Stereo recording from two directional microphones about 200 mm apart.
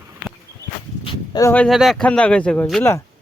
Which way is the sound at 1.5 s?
5° left (ahead or behind).